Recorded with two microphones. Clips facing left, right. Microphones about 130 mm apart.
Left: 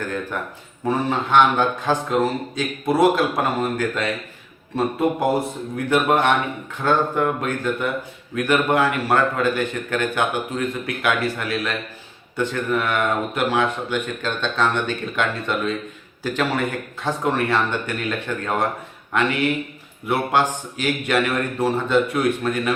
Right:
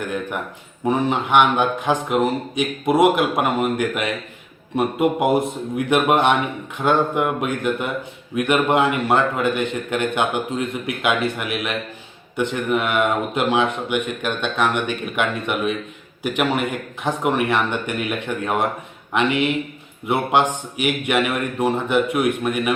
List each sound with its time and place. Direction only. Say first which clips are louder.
0.0 s a man's voice: right 1 dB; 15° right (ahead or behind)